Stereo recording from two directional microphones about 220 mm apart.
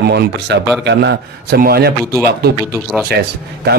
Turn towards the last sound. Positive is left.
turn(degrees=-45)  # may be behind; listen again after turning